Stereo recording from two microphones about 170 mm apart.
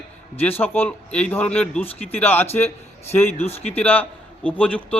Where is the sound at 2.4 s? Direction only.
40° left (ahead or behind).